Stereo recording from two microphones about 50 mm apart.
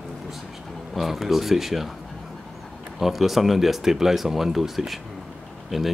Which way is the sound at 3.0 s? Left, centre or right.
Centre.